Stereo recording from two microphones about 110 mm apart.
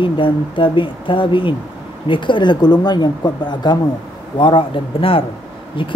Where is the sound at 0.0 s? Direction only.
50° left (ahead or behind).